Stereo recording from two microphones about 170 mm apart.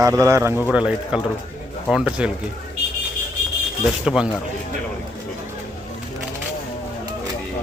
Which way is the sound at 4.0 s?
5° right (ahead or behind).